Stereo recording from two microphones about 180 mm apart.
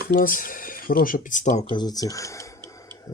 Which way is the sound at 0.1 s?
50° left (ahead or behind).